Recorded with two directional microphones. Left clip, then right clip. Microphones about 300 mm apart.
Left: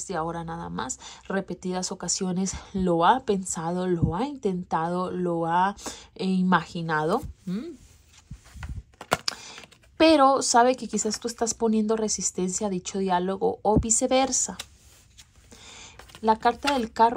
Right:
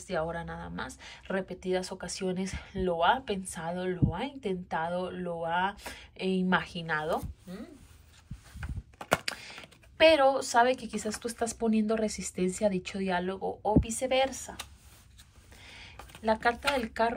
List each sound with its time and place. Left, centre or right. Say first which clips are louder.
0.0 s speech: left 3 dB; centre
8.9 s speech: left 3 dB; centre
15.5 s a sound: left 3 dB; centre
16.0 s speech: left 6 dB; centre